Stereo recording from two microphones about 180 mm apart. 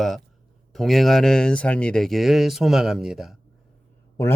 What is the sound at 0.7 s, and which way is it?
Speech, centre (ahead or behind).